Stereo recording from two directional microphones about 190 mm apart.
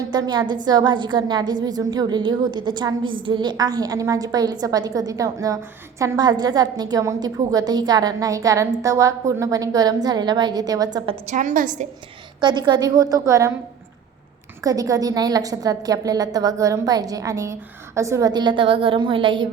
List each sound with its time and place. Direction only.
0.1 s a woman's voice: 20° right (ahead or behind)
11.3 s a woman's voice: 45° right (ahead or behind)
12.4 s a woman's voice: 25° right (ahead or behind)
14.6 s a woman's voice: 20° right (ahead or behind)